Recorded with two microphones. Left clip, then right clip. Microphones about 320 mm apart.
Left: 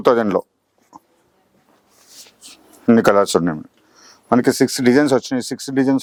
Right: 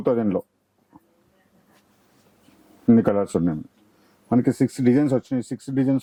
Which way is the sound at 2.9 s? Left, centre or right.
Centre.